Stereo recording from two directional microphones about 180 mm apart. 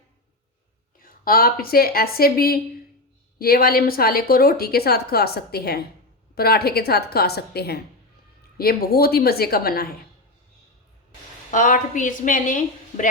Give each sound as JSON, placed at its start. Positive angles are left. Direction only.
{"t": 1.0, "sound": "a woman's voice", "side_deg": 55}
{"t": 11.5, "sound": "a woman's voice", "side_deg": 45}